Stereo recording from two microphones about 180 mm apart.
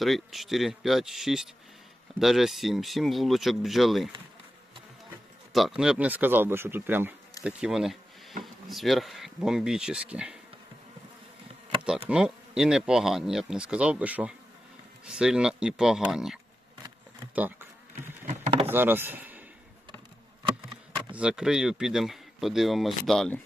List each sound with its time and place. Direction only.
0.0 s speech: centre (ahead or behind)
5.5 s speech: centre (ahead or behind)
12.0 s speech: 5° right (ahead or behind)
17.3 s a sound: 10° right (ahead or behind)
18.3 s vehicle: 35° right (ahead or behind)
18.7 s speech: 10° right (ahead or behind)
21.1 s speech: 5° right (ahead or behind)